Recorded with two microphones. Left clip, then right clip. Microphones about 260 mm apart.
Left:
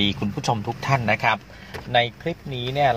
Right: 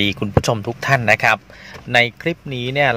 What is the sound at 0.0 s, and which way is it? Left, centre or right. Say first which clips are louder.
A man's voice: right 6 dB; right.